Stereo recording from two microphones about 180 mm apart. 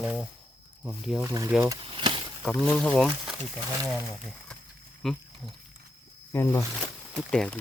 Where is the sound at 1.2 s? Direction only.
20° right (ahead or behind).